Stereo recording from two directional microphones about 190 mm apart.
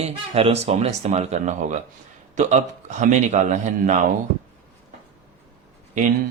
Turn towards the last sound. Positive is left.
turn(degrees=-45)  # may be behind; listen again after turning